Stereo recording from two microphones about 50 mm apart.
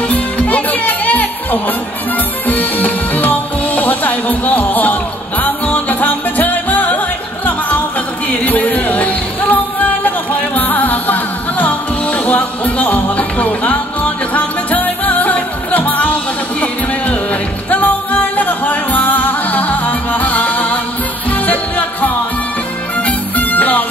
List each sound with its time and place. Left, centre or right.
0.1 s music: left
8.5 s music: left